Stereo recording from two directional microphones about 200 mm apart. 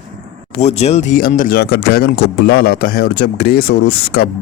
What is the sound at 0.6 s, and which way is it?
Speech, 35° left (ahead or behind).